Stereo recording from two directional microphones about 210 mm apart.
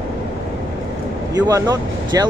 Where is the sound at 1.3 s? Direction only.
15° right (ahead or behind).